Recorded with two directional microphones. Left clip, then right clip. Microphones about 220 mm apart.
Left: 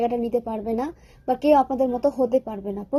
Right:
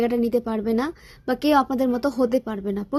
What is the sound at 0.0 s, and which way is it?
A woman's voice, 35° right (ahead or behind).